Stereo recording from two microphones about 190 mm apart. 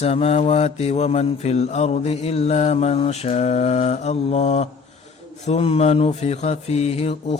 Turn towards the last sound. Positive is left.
turn(degrees=35)  # may be behind; listen again after turning